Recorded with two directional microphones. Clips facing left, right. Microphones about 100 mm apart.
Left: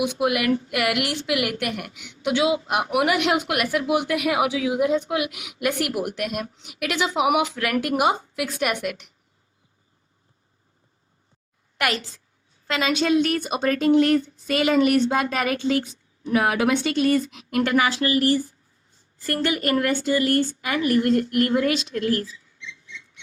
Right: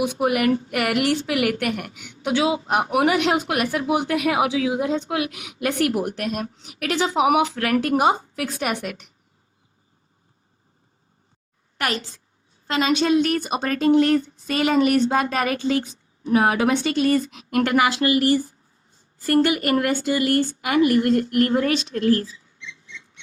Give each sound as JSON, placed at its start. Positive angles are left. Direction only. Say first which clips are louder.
{"t": 0.0, "sound": "speech", "louder": "right 2 dB", "side_deg": -40}
{"t": 11.8, "sound": "speech", "louder": "left 1 dB", "side_deg": -35}
{"t": 17.8, "sound": "speech", "louder": "right 3 dB", "side_deg": -20}
{"t": 19.7, "sound": "speech", "louder": "right 1 dB", "side_deg": -30}